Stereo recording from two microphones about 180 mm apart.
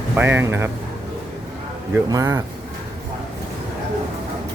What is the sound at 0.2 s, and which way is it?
Speech, 10° right (ahead or behind).